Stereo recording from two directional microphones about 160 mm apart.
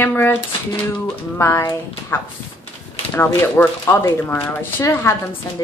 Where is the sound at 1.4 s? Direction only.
15° left (ahead or behind).